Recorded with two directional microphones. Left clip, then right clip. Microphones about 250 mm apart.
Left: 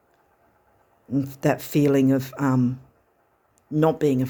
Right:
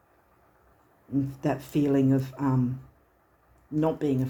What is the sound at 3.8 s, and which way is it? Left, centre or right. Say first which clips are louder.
Speech: left 7 dB; left.